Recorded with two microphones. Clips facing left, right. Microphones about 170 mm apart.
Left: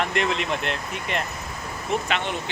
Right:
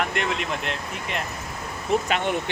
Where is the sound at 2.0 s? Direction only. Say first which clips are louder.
Right 2 dB; 45° right (ahead or behind).